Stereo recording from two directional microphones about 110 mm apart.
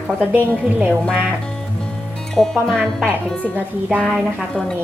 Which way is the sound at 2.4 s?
Centre (ahead or behind).